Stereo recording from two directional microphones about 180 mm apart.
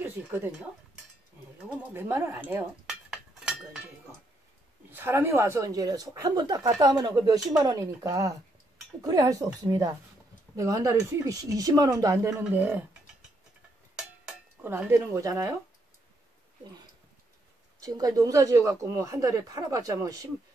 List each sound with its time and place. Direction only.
0.0 s a sound: 10° right (ahead or behind)
1.6 s dishes: 10° right (ahead or behind)
4.9 s a woman's voice: 10° right (ahead or behind)
13.9 s dishes: 10° right (ahead or behind)
17.8 s speech: 20° right (ahead or behind)